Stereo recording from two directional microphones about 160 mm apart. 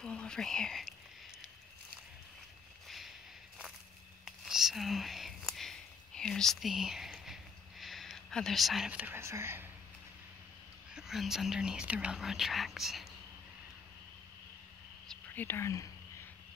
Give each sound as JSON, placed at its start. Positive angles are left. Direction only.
{"t": 0.0, "sound": "speech", "side_deg": 5}
{"t": 2.9, "sound": "a sound", "side_deg": 0}
{"t": 4.2, "sound": "whispering", "side_deg": -5}
{"t": 7.8, "sound": "speech", "side_deg": 0}
{"t": 10.9, "sound": "speech", "side_deg": -5}
{"t": 15.0, "sound": "whispering", "side_deg": 10}